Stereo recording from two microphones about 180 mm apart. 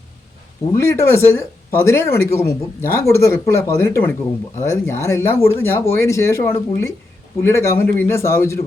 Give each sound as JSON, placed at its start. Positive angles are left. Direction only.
{"t": 0.8, "sound": "speech", "side_deg": 15}